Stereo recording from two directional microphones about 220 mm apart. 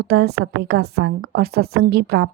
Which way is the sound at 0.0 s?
45° right (ahead or behind).